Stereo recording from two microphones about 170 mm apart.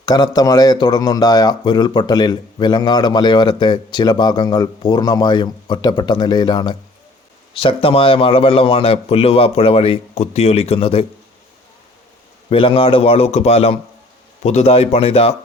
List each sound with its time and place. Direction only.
0.0 s speech: 25° left (ahead or behind)
12.5 s speech: 35° left (ahead or behind)